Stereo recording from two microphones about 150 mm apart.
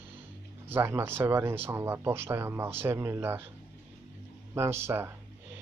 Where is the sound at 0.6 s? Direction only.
15° right (ahead or behind).